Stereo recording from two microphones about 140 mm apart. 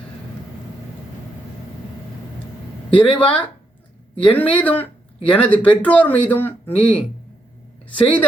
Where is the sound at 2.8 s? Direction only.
40° left (ahead or behind).